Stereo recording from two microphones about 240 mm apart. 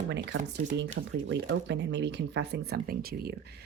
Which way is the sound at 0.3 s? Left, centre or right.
Right.